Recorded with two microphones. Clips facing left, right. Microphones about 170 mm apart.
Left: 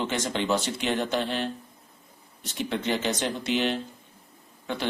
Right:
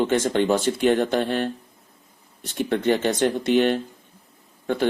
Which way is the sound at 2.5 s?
55° right (ahead or behind).